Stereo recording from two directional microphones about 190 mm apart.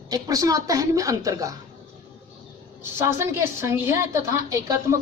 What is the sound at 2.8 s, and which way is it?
A woman's voice, 15° right (ahead or behind).